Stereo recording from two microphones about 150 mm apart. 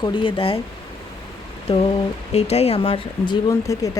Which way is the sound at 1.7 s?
40° left (ahead or behind).